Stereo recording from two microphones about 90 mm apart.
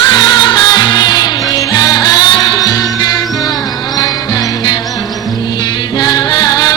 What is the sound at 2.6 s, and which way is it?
Music, 45° left (ahead or behind).